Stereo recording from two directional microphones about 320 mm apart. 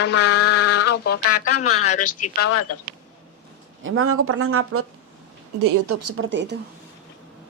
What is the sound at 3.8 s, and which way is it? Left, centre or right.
Speech, right.